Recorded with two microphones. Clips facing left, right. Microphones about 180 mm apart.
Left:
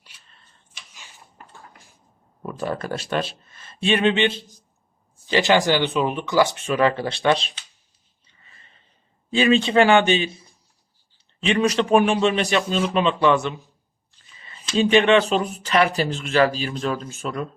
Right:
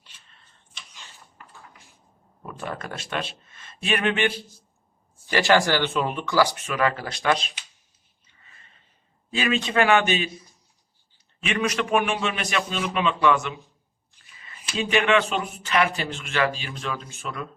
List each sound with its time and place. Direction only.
2.5 s speech: 35° left (ahead or behind)
9.3 s speech: 30° left (ahead or behind)
14.8 s speech: 30° left (ahead or behind)